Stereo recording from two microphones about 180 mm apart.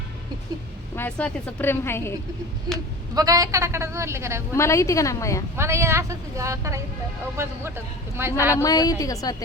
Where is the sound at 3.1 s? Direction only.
20° right (ahead or behind).